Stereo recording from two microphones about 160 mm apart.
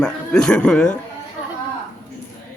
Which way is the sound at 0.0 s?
5° left (ahead or behind).